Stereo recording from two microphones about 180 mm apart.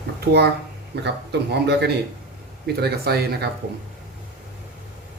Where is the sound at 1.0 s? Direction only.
70° right (ahead or behind).